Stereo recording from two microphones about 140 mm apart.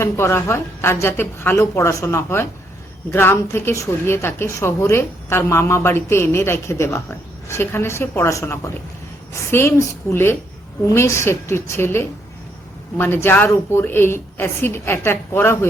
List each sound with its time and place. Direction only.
0.0 s a woman's voice: 20° left (ahead or behind)